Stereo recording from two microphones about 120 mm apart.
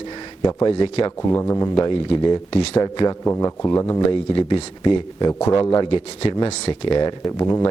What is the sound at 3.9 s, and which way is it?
Speech, 45° left (ahead or behind).